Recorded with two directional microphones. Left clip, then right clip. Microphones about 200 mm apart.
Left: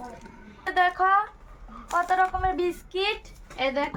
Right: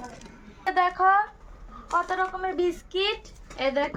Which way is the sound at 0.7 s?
10° right (ahead or behind).